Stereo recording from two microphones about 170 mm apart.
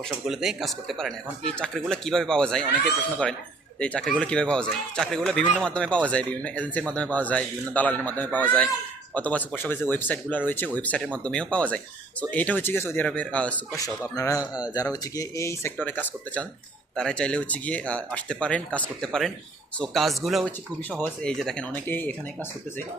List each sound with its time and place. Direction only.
0.1 s speech: centre (ahead or behind)
3.8 s speech: 5° left (ahead or behind)
13.7 s speech: 20° left (ahead or behind)